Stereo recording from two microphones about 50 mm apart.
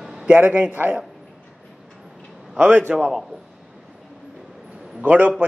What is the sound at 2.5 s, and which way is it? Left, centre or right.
Speech, right.